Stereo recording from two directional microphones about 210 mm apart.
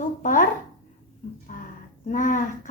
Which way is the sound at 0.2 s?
40° left (ahead or behind).